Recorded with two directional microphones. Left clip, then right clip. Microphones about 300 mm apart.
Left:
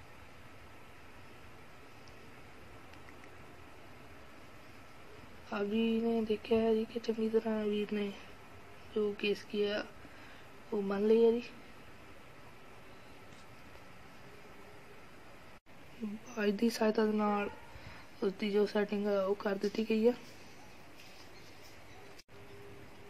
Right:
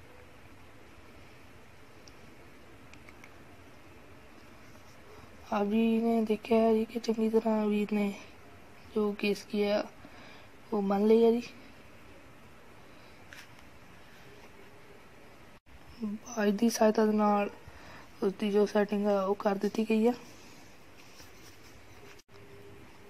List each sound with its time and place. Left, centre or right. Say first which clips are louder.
5.5 s speech: right 5 dB; right
16.3 s speech: right 4 dB; centre